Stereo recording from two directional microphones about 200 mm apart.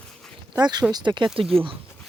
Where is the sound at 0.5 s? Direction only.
20° right (ahead or behind).